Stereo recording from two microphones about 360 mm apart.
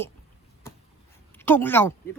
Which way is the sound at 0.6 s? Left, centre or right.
Centre.